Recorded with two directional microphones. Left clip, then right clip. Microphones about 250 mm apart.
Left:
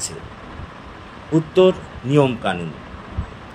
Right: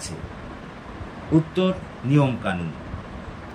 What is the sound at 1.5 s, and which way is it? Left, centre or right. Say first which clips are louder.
A man's voice: left 10 dB; centre.